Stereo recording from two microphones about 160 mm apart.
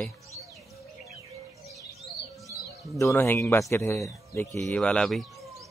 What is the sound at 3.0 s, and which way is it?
Speech, 15° left (ahead or behind).